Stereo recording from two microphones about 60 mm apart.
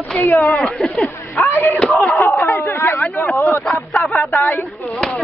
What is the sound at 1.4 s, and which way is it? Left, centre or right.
Speech, left.